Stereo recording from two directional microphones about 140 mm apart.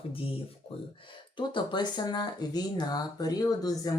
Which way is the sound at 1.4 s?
35° left (ahead or behind).